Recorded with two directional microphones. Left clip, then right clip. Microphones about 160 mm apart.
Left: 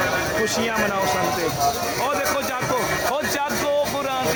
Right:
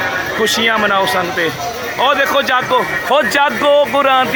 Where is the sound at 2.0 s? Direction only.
50° right (ahead or behind).